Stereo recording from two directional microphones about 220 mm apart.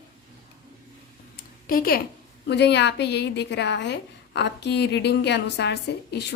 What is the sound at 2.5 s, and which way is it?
A woman's voice, 50° left (ahead or behind).